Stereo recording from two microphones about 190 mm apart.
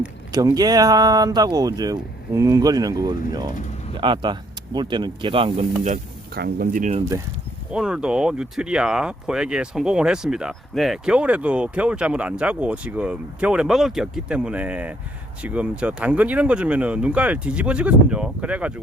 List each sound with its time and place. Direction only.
0.3 s speech: 20° right (ahead or behind); by 6.0 s 35° right (ahead or behind)
6.3 s speech: 55° right (ahead or behind)
7.7 s speech: 5° right (ahead or behind)